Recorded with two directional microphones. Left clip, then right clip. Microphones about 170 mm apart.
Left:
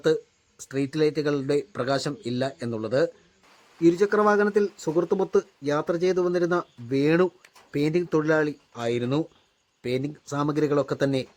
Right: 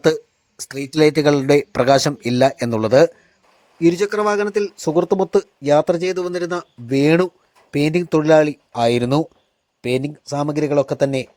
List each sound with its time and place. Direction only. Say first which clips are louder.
0.6 s speech: right 8 dB; 40° right (ahead or behind)
3.8 s speech: right 4 dB; 30° right (ahead or behind)
10.2 s speech: right 3 dB; 20° right (ahead or behind)